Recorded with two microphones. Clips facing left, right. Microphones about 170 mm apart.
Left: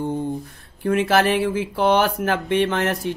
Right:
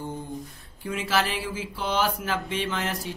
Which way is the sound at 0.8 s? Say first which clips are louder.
Left 9 dB; 60° left (ahead or behind).